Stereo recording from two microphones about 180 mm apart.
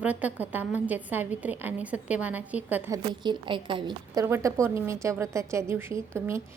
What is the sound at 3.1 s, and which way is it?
A woman's voice, 25° right (ahead or behind).